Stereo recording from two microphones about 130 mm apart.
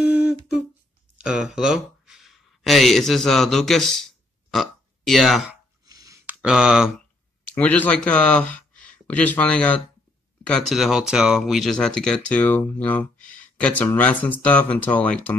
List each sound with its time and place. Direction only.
0.1 s humming: 10° right (ahead or behind)
1.1 s speech: 5° right (ahead or behind)
5.9 s a sound: 25° right (ahead or behind)
6.2 s speech: 5° right (ahead or behind)
7.5 s speech: 15° left (ahead or behind)